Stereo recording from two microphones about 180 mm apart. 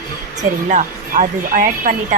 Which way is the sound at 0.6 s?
40° right (ahead or behind).